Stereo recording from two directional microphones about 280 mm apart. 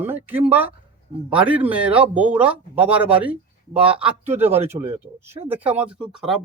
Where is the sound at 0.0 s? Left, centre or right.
Centre.